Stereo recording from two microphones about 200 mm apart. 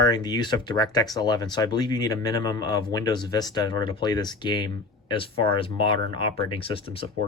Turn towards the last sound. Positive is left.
turn(degrees=25)  # may be behind; listen again after turning